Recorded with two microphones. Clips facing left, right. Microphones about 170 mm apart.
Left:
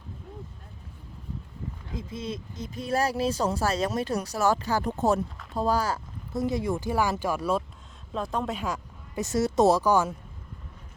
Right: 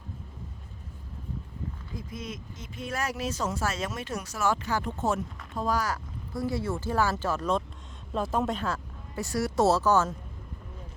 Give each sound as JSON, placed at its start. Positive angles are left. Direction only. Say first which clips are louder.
{"t": 1.9, "sound": "speech", "louder": "left 6 dB", "side_deg": 25}
{"t": 8.1, "sound": "speech", "louder": "right 2 dB", "side_deg": -5}
{"t": 8.5, "sound": "speech", "louder": "even", "side_deg": 15}